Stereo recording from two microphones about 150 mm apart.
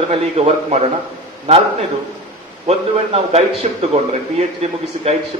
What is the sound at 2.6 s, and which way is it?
A man's voice, 45° right (ahead or behind).